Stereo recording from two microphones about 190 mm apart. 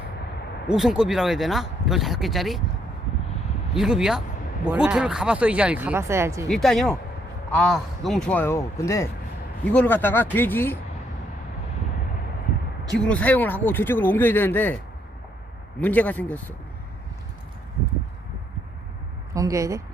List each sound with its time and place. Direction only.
0.7 s speech: 5° right (ahead or behind)
3.8 s speech: 5° right (ahead or behind)
6.5 s speech: centre (ahead or behind)
13.0 s speech: 5° left (ahead or behind)
15.8 s speech: 10° left (ahead or behind)
19.3 s speech: 15° right (ahead or behind)